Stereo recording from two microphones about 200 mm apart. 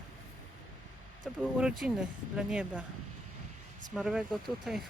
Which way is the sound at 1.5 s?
5° right (ahead or behind).